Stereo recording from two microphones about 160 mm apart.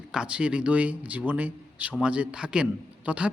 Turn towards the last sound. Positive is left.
turn(degrees=-5)  # may be behind; listen again after turning